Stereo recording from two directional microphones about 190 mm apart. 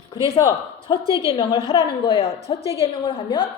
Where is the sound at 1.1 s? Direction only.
30° left (ahead or behind).